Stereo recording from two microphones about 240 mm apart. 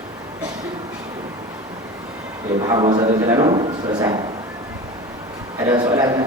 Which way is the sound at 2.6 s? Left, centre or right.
Centre.